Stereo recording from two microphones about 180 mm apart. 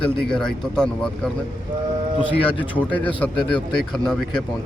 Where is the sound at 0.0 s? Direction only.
5° left (ahead or behind).